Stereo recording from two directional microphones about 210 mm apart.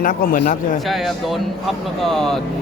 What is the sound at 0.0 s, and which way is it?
Speech, 40° left (ahead or behind).